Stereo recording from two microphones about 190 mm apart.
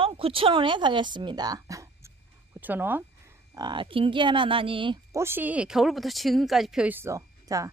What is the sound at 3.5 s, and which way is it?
Speech, 25° right (ahead or behind).